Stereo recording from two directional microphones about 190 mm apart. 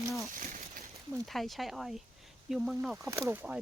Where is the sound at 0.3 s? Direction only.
50° right (ahead or behind).